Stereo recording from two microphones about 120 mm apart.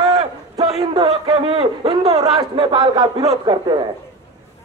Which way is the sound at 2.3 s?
45° right (ahead or behind).